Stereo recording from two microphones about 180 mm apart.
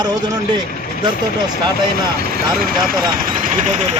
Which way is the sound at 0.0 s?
25° right (ahead or behind).